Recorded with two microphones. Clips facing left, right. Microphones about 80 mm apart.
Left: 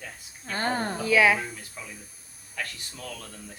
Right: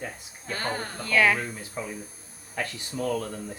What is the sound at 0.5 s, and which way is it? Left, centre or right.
Speech, left.